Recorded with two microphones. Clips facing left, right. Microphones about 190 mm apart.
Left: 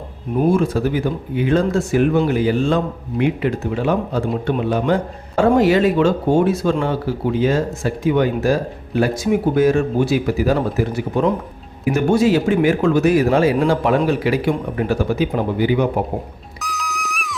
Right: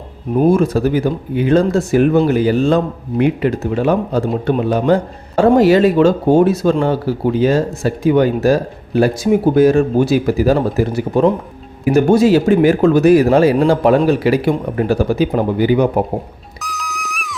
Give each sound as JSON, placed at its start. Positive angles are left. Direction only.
{"t": 0.5, "sound": "speech", "side_deg": -40}
{"t": 16.6, "sound": "music", "side_deg": 0}